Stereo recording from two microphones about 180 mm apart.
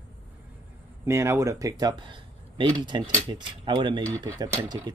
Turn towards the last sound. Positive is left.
turn(degrees=-25)  # may be behind; listen again after turning